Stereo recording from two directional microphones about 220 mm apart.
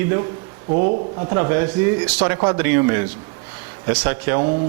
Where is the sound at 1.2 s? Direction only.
20° right (ahead or behind).